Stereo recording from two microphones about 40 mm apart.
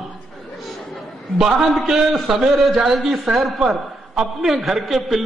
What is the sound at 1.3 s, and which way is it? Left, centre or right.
Speech, centre.